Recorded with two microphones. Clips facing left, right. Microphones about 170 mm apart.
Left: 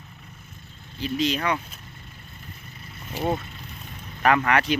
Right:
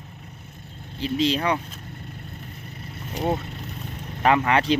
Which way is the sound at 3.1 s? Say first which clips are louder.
Right 1 dB; centre (ahead or behind).